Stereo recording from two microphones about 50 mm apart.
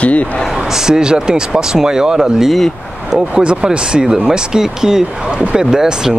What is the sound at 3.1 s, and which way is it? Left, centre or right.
Speech, right.